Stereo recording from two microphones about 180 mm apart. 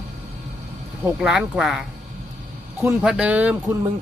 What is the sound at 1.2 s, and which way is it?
Speech, 5° right (ahead or behind).